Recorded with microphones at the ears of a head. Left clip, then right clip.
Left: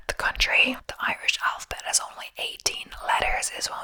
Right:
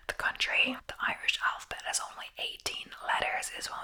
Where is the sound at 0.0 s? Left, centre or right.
Left.